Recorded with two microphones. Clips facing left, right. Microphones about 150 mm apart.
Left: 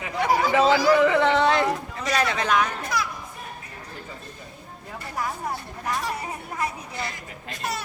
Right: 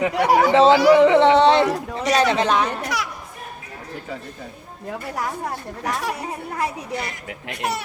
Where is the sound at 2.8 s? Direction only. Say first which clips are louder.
Right 1 dB; 75° right (ahead or behind).